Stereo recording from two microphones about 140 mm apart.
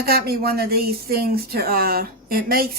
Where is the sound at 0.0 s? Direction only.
90° right.